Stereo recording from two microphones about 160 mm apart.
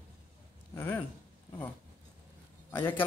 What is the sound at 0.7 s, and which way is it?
Speech, 15° left (ahead or behind).